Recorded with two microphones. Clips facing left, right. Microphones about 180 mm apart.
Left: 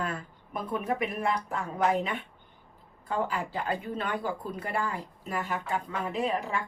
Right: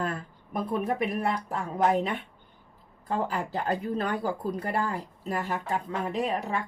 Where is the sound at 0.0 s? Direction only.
40° right (ahead or behind).